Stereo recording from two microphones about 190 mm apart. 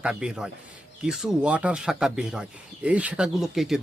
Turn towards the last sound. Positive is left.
turn(degrees=0)  # may be behind; listen again after turning